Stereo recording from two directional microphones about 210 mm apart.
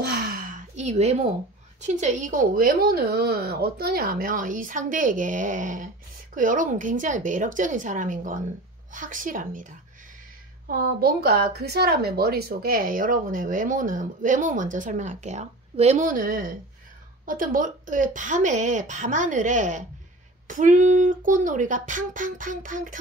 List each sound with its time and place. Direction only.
0.0 s sigh: 45° right (ahead or behind); by 1.3 s 30° right (ahead or behind)
1.8 s speech: 35° right (ahead or behind)
10.7 s speech: 45° right (ahead or behind)